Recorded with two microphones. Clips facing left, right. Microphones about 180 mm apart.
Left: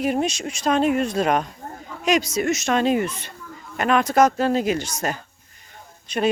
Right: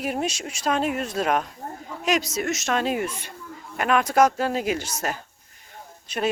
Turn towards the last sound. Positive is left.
turn(degrees=-5)  # may be behind; listen again after turning